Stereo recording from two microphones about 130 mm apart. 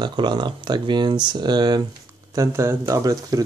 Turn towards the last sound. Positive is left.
turn(degrees=-30)  # may be behind; listen again after turning